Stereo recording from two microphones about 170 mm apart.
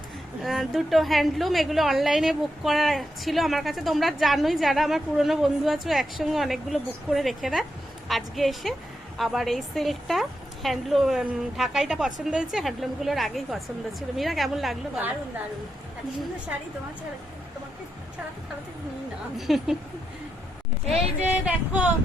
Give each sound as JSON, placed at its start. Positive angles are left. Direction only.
{"t": 0.4, "sound": "a woman's voice", "side_deg": 0}
{"t": 19.4, "sound": "a woman's voice", "side_deg": 0}
{"t": 21.2, "sound": "speech", "side_deg": -10}